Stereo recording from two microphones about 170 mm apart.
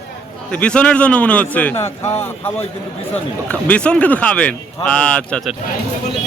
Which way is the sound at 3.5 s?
10° left (ahead or behind).